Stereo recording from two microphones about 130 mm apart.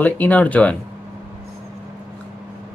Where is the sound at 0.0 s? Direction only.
10° left (ahead or behind).